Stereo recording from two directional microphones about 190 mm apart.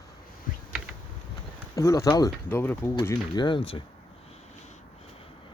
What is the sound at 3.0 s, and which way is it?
Speech, 20° left (ahead or behind).